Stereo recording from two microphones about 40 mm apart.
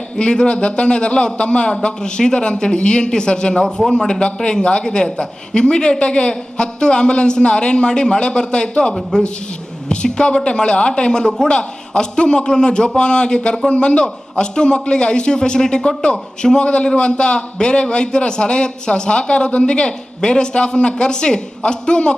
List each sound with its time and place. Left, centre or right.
0.2 s a man's voice: left